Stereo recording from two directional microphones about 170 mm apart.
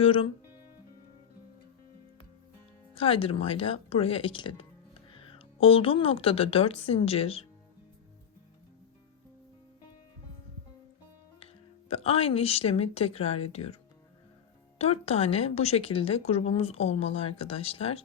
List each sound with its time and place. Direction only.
0.0 s speech: 35° left (ahead or behind)
2.9 s a woman's voice: 35° left (ahead or behind)
11.3 s speech: 35° left (ahead or behind)
14.8 s speech: 35° left (ahead or behind)